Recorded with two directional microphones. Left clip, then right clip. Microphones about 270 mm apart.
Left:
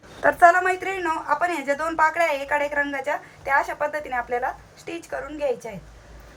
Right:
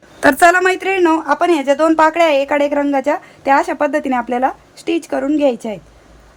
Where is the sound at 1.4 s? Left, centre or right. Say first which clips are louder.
Right 11 dB; right.